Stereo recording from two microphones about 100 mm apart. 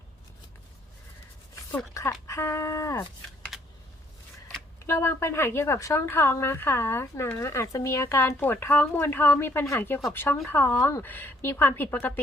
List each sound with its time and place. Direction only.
1.9 s speech: 30° left (ahead or behind)
3.5 s a sound: 5° right (ahead or behind)
4.9 s speech: 25° left (ahead or behind)